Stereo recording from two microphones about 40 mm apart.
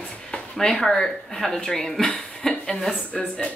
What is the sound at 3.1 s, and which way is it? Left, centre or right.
Speech, left.